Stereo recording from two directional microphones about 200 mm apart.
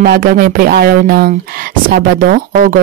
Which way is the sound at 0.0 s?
50° right (ahead or behind).